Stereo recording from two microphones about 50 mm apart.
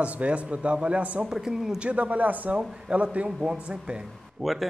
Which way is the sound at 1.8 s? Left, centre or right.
Right.